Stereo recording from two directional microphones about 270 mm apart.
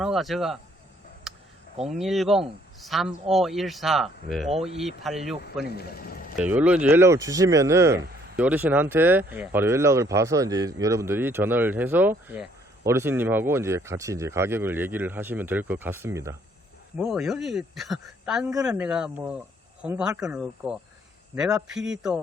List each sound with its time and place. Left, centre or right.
0.0 s a man's voice: centre
1.3 s a sound: centre
1.8 s a man's voice: centre
5.6 s ratchet: left
6.3 s a man's voice: centre